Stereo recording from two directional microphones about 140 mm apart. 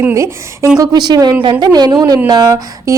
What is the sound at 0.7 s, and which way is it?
A woman's voice, 30° right (ahead or behind).